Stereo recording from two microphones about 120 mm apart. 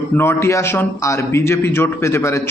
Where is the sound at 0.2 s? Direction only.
20° left (ahead or behind).